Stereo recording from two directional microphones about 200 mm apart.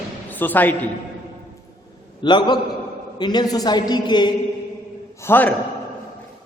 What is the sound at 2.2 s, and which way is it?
A woman's voice, 20° left (ahead or behind).